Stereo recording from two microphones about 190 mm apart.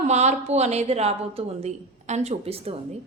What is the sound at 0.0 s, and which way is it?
A woman's voice, 35° right (ahead or behind).